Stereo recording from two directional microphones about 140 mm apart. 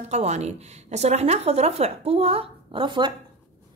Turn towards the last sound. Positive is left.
turn(degrees=-35)  # may be behind; listen again after turning